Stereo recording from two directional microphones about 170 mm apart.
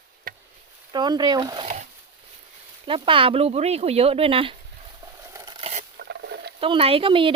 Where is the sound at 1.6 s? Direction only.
45° right (ahead or behind).